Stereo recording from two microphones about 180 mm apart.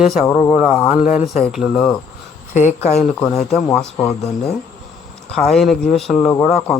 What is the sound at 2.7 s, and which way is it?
Speech, 35° left (ahead or behind).